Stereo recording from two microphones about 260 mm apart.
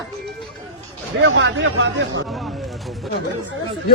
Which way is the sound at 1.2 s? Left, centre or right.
Right.